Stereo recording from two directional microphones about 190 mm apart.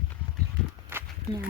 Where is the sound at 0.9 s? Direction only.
10° right (ahead or behind).